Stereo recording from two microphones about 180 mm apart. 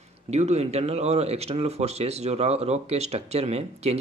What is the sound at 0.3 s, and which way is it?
Speech, 35° right (ahead or behind).